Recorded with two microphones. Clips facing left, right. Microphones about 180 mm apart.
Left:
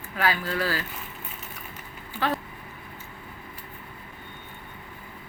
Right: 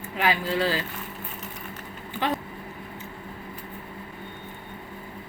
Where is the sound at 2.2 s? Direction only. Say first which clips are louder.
Even; 20° right (ahead or behind).